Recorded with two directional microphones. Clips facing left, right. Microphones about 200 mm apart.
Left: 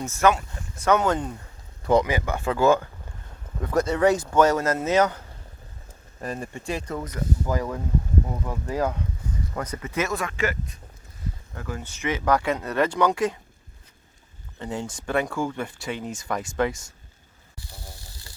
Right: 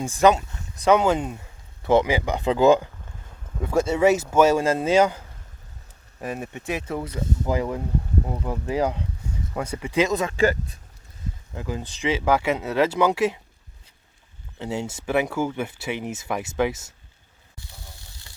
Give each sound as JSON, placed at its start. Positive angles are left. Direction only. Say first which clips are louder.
{"t": 0.0, "sound": "speech", "louder": "right 3 dB", "side_deg": -15}
{"t": 3.9, "sound": "speech", "louder": "right 2 dB", "side_deg": -5}
{"t": 11.5, "sound": "speech", "louder": "right 5 dB", "side_deg": -15}
{"t": 14.6, "sound": "speech", "louder": "right 2 dB", "side_deg": -10}